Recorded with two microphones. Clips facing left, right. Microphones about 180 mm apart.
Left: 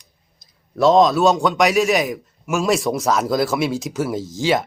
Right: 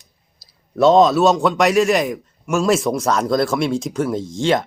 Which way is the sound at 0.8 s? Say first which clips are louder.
Right 2 dB; centre (ahead or behind).